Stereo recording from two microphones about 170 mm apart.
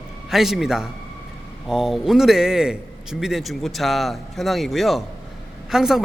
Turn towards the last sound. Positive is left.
turn(degrees=-5)  # may be behind; listen again after turning